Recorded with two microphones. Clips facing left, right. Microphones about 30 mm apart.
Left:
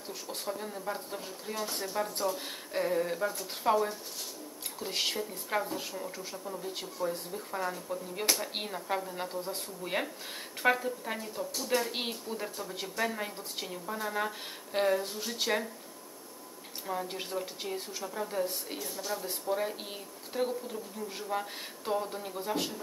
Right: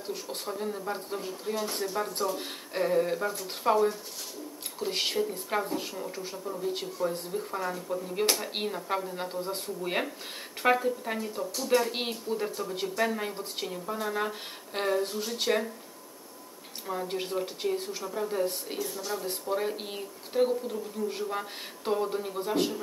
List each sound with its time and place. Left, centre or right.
0.0 s speech: right
0.6 s speech: centre
16.8 s speech: centre